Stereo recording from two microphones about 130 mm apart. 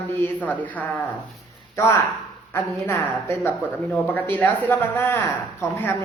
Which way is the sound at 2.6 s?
20° left (ahead or behind).